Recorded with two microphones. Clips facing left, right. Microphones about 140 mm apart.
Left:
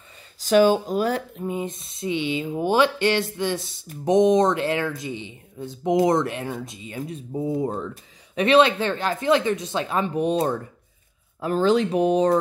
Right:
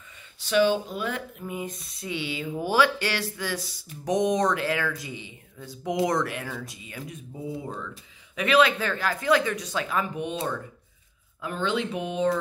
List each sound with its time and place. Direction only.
0.4 s speech: 45° left (ahead or behind); by 7.2 s 25° left (ahead or behind)
7.3 s speech: 45° left (ahead or behind)
8.4 s speech: 25° left (ahead or behind)